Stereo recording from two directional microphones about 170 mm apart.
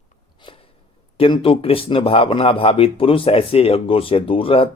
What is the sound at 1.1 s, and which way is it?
A man's voice, 30° left (ahead or behind).